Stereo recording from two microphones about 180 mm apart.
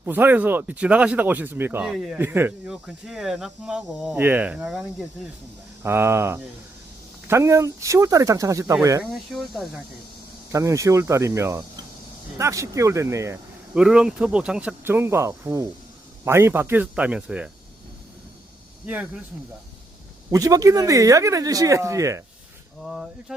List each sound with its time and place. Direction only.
0.0 s speech: 10° right (ahead or behind)
5.8 s speech: 15° right (ahead or behind)
9.3 s speech: centre (ahead or behind)
10.5 s speech: 15° right (ahead or behind)
13.7 s speech: 5° right (ahead or behind)
18.9 s speech: 10° right (ahead or behind)
20.3 s speech: 20° right (ahead or behind)